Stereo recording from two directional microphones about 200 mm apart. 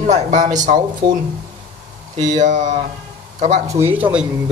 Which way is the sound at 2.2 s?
40° right (ahead or behind).